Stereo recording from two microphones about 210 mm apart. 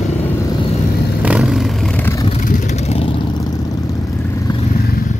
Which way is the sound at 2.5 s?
30° left (ahead or behind).